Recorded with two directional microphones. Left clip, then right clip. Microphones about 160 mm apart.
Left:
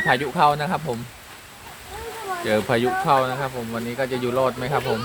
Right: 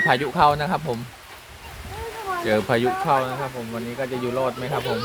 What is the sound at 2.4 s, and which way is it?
Speech, centre (ahead or behind).